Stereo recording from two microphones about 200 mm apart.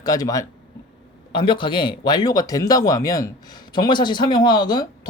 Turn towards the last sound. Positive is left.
turn(degrees=20)  # may be behind; listen again after turning